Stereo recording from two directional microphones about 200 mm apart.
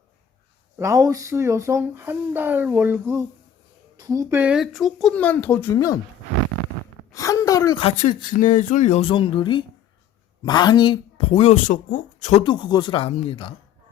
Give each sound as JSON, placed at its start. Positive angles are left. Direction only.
{"t": 0.8, "sound": "speech", "side_deg": -15}
{"t": 7.1, "sound": "a sound", "side_deg": 15}
{"t": 8.4, "sound": "speech", "side_deg": 40}
{"t": 12.4, "sound": "speech", "side_deg": 25}